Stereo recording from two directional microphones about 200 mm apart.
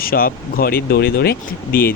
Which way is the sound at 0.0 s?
45° left (ahead or behind).